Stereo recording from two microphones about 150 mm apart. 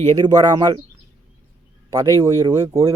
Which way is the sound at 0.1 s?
25° right (ahead or behind).